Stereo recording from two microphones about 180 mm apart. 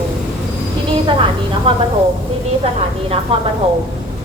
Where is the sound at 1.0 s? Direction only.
30° right (ahead or behind).